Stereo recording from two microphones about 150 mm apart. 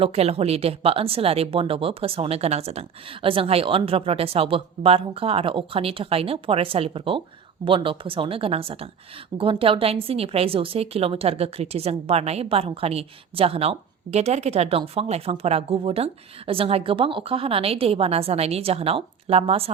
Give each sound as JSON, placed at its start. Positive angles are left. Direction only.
{"t": 0.0, "sound": "speech", "side_deg": -45}